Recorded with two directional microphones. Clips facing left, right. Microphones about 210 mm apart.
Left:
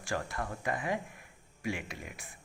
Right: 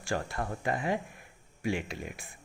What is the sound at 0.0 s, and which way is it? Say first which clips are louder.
Speech: right 3 dB; 30° right (ahead or behind).